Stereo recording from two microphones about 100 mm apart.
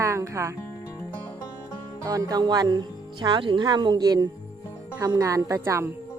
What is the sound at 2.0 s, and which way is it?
Speech, 40° right (ahead or behind).